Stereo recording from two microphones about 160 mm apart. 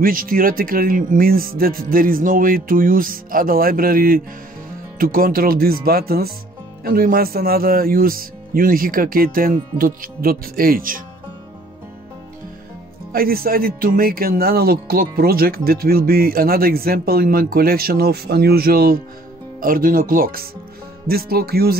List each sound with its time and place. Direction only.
0.0 s speech: 60° right (ahead or behind)
13.1 s speech: 70° right (ahead or behind)